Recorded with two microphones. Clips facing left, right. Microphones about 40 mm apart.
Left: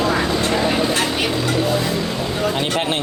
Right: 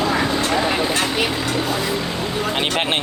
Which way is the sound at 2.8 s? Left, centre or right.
Right.